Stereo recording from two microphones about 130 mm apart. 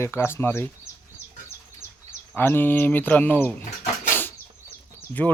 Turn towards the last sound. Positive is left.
turn(degrees=15)  # may be behind; listen again after turning